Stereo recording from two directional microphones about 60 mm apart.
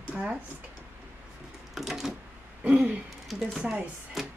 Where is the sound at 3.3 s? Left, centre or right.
Centre.